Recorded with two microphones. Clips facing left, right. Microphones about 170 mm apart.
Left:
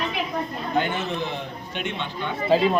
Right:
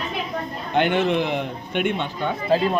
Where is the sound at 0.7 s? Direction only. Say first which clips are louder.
Right 6 dB; 65° right (ahead or behind).